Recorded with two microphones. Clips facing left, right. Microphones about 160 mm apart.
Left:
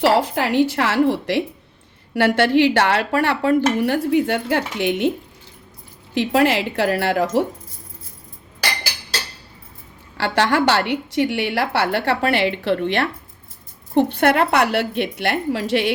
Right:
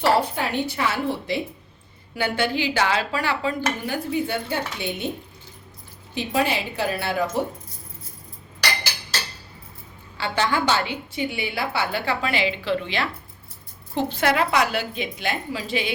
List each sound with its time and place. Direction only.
0.0 s a woman's voice: 90° left
6.1 s a woman's voice: 90° left
10.2 s a woman's voice: 75° left (ahead or behind)